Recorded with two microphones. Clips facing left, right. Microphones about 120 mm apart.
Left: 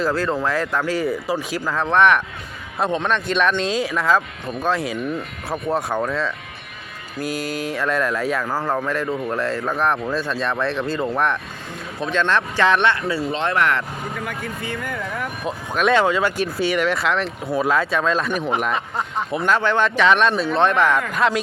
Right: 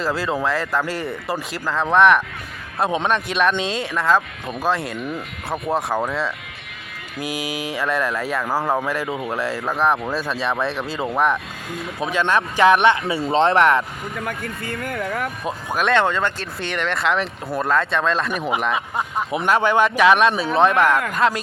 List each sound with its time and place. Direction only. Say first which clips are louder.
0.0 s a man's voice: left 1 dB; 5° right (ahead or behind)
8.4 s speech: right 1 dB; 10° right (ahead or behind)
13.2 s speech: right 6 dB; 30° right (ahead or behind)
14.3 s speech: even; 55° right (ahead or behind)
15.4 s speech: left 3 dB; centre (ahead or behind)